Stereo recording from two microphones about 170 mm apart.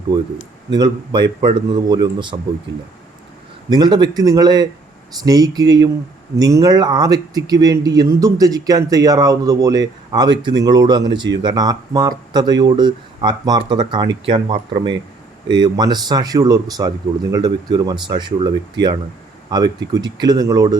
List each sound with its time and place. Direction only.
0.1 s speech: 25° right (ahead or behind)
3.7 s speech: 25° right (ahead or behind)